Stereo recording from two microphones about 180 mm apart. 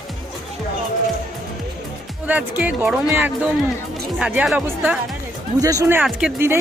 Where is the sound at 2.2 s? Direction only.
10° right (ahead or behind).